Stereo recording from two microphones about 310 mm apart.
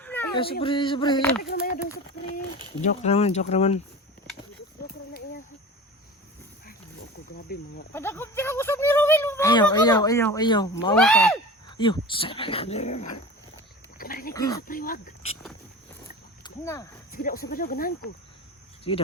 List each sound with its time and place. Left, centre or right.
0.0 s a sound: centre
0.6 s speech: centre
1.4 s speech: left
2.8 s speech: left
7.4 s speech: left
7.9 s speech: centre
10.9 s speech: centre
11.8 s speech: centre
14.0 s pig: left
14.3 s speech: centre
14.7 s speech: left
16.4 s speech: centre
17.1 s speech: left